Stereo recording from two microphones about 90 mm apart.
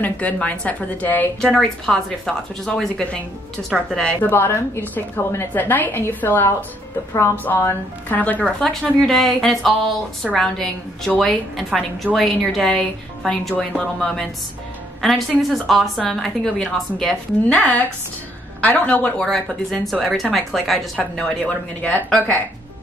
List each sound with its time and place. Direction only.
0.0 s speech: 15° left (ahead or behind)
1.4 s a woman's voice: 5° left (ahead or behind)
17.6 s a woman's voice: 15° left (ahead or behind)